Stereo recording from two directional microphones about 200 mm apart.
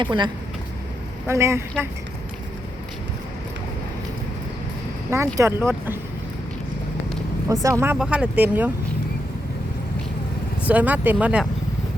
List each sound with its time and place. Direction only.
0.0 s speech: 25° right (ahead or behind)
1.3 s speech: 15° right (ahead or behind)
5.1 s speech: 15° right (ahead or behind)
7.4 s speech: 15° right (ahead or behind)
10.7 s speech: 10° right (ahead or behind)